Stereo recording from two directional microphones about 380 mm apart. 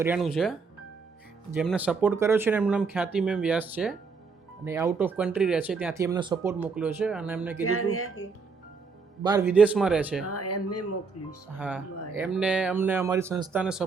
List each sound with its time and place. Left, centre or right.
0.0 s speech: centre
1.5 s speech: centre
7.6 s speech: left
9.2 s speech: centre
10.2 s speech: left
11.5 s speech: centre